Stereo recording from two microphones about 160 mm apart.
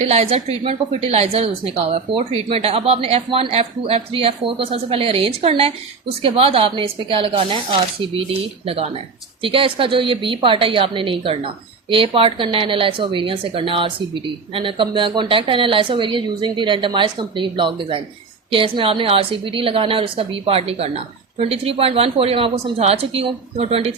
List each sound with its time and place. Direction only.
0.0 s a woman's voice: 40° right (ahead or behind)